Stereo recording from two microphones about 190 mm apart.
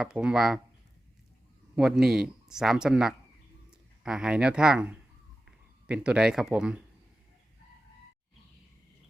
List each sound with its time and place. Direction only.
0.0 s speech: 5° right (ahead or behind)
1.7 s speech: centre (ahead or behind)